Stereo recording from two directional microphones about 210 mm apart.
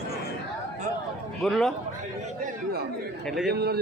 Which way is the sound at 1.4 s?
Centre (ahead or behind).